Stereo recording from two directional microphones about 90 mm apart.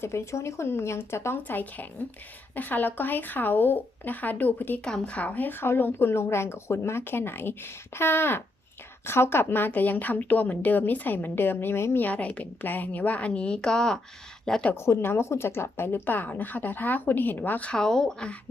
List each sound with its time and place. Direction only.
0.0 s a woman's voice: 30° left (ahead or behind); by 14.7 s 5° left (ahead or behind)
14.7 s a woman's voice: 30° left (ahead or behind); by 18.3 s 10° left (ahead or behind)